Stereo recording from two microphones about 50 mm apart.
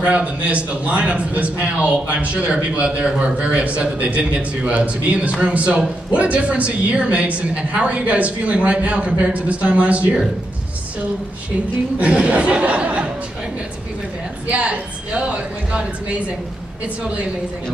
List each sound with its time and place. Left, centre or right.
0.0 s a man's voice: right
12.0 s a man's voice: right
14.5 s a sound: right